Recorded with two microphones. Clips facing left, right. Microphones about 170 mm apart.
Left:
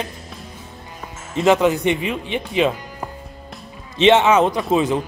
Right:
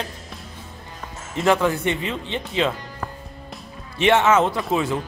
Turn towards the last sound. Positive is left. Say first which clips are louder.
# left 4 dB
turn(degrees=20)  # may be behind; listen again after turning